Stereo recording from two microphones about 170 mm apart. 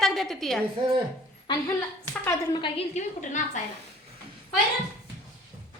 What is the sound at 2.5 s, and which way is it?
A woman's voice, 30° left (ahead or behind).